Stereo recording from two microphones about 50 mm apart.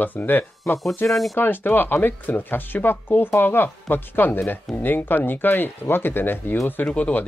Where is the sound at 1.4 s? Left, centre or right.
Left.